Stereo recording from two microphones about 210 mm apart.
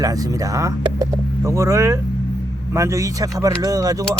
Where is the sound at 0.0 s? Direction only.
15° right (ahead or behind).